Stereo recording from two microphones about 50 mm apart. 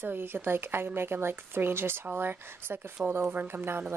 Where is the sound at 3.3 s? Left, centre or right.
Right.